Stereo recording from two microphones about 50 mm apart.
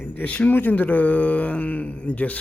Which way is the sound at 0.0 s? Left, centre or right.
Left.